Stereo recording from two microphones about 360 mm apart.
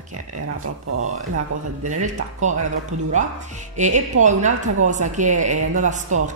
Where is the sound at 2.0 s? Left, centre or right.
Centre.